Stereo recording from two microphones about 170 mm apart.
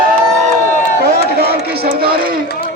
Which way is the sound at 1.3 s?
65° right (ahead or behind).